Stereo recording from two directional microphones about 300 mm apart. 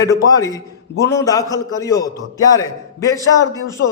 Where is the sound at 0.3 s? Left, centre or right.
Centre.